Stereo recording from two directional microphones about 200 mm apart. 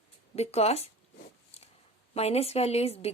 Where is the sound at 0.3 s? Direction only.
30° left (ahead or behind).